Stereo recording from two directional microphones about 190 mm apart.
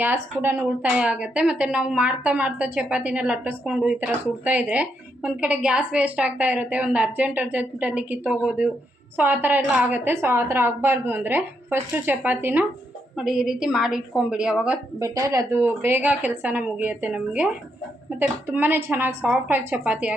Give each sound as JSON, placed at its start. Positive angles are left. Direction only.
{"t": 0.0, "sound": "a woman's voice", "side_deg": -10}
{"t": 14.9, "sound": "speech", "side_deg": -15}